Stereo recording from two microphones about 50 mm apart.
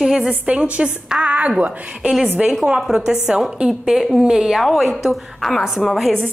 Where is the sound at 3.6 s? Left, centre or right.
Right.